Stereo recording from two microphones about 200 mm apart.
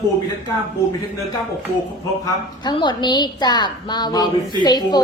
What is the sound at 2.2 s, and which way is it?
A woman's voice, 20° left (ahead or behind).